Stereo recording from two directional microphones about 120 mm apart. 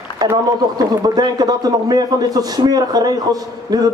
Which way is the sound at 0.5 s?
30° right (ahead or behind).